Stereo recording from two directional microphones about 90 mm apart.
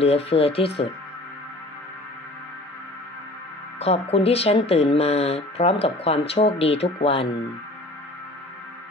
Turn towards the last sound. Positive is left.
turn(degrees=90)